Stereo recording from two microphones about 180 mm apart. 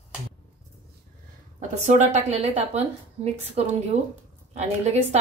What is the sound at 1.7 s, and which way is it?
A woman's voice, 40° right (ahead or behind).